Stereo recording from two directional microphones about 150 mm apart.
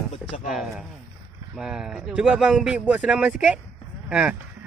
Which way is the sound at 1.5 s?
5° right (ahead or behind).